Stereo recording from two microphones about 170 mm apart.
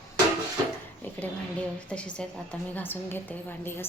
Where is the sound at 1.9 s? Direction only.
5° left (ahead or behind).